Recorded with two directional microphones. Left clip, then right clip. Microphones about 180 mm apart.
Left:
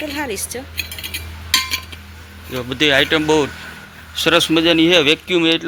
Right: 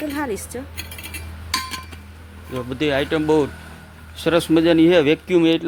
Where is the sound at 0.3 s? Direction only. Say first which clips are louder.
Left 2 dB; 50° right (ahead or behind).